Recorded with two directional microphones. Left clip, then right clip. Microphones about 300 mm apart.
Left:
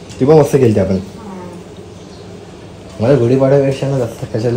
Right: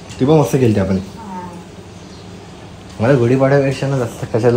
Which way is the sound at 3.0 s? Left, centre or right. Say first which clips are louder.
Left 2 dB; centre.